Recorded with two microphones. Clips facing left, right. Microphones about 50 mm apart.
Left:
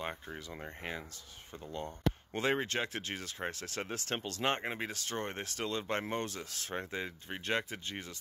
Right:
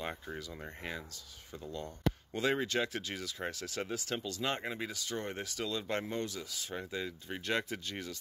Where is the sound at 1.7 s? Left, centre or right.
Left.